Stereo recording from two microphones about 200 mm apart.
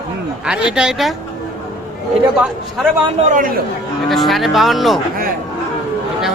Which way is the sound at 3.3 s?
40° right (ahead or behind).